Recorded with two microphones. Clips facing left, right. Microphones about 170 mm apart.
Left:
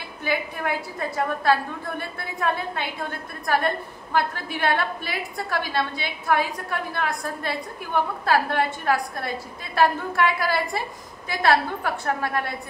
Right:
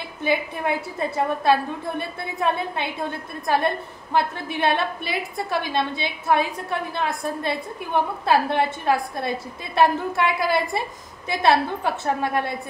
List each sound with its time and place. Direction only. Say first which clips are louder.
0.2 s a woman's voice: right 3 dB; 25° right (ahead or behind)